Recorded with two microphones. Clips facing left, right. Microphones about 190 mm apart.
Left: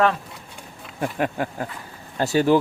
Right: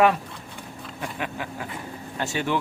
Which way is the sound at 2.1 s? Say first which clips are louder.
Left 9 dB; 35° left (ahead or behind).